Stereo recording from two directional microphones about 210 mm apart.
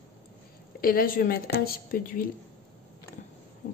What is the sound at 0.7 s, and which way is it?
A woman's voice, 45° left (ahead or behind).